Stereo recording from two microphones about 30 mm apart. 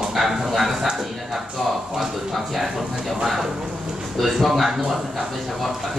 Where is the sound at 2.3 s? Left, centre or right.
Centre.